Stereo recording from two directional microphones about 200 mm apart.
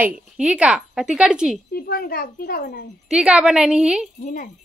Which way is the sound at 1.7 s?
50° left (ahead or behind).